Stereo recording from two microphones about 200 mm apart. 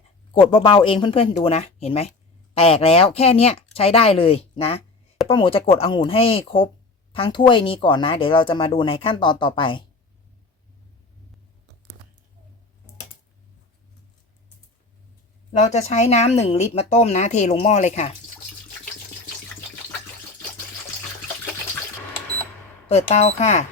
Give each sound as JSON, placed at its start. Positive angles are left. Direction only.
{"t": 0.3, "sound": "speech", "side_deg": 25}
{"t": 15.5, "sound": "speech", "side_deg": 35}
{"t": 22.9, "sound": "speech", "side_deg": 30}